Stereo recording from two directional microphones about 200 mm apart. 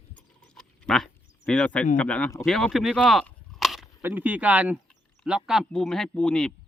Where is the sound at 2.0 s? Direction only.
5° left (ahead or behind).